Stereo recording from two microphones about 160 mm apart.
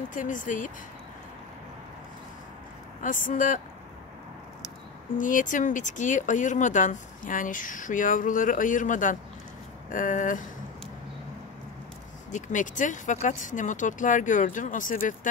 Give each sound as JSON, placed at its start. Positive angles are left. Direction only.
{"t": 0.1, "sound": "speech", "side_deg": 55}
{"t": 3.0, "sound": "speech", "side_deg": 55}
{"t": 5.1, "sound": "speech", "side_deg": 55}
{"t": 12.3, "sound": "speech", "side_deg": 50}